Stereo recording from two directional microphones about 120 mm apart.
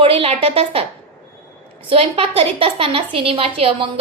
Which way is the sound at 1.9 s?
50° right (ahead or behind).